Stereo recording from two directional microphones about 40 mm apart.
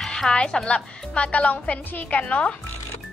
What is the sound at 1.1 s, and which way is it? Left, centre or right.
A woman's voice, left.